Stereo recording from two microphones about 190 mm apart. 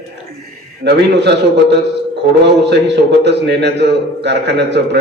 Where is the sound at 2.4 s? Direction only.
60° right (ahead or behind).